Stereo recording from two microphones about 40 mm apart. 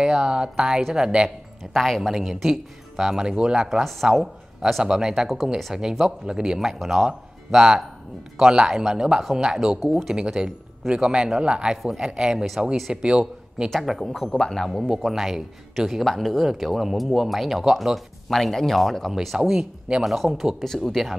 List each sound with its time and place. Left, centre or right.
0.0 s speech: right
1.7 s speech: centre
3.6 s speech: centre
4.8 s speech: centre
9.8 s speech: centre
10.1 s speech: right
13.7 s speech: centre
14.0 s speech: centre
15.0 s speech: centre